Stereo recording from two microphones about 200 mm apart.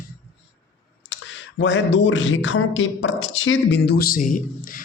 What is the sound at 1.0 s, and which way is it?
Speech, 65° left (ahead or behind).